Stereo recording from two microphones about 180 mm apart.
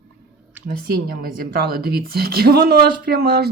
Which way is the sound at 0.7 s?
55° right (ahead or behind).